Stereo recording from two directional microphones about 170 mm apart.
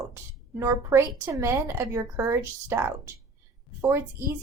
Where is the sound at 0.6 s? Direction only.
15° right (ahead or behind).